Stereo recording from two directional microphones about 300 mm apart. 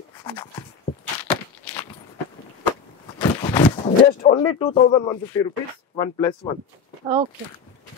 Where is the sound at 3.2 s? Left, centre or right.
Centre.